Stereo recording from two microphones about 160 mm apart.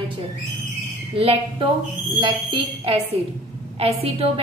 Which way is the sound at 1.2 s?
35° right (ahead or behind).